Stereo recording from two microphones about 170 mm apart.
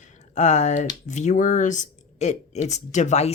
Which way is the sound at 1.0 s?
45° left (ahead or behind).